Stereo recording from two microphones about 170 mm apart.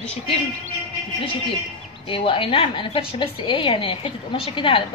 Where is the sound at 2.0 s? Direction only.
30° left (ahead or behind).